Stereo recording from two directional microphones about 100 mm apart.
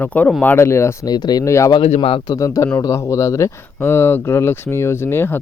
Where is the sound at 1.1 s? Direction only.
45° left (ahead or behind).